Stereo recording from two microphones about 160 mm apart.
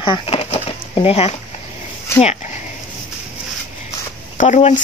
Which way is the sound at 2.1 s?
15° left (ahead or behind).